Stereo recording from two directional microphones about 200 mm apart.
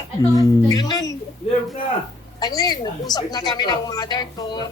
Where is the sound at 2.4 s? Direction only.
20° left (ahead or behind).